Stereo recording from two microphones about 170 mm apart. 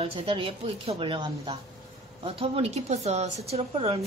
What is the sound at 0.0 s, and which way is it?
Speech, 35° right (ahead or behind).